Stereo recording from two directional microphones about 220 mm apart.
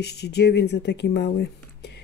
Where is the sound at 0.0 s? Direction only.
50° left (ahead or behind).